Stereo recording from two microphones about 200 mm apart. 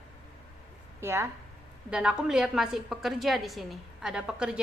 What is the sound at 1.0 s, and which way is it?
A woman's voice, 15° right (ahead or behind).